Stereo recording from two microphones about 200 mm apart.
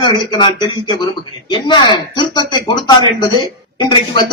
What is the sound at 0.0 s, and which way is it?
A man's voice, 25° left (ahead or behind).